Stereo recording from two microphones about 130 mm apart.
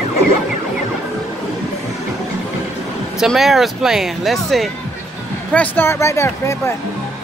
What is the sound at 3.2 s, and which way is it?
Speech, centre (ahead or behind).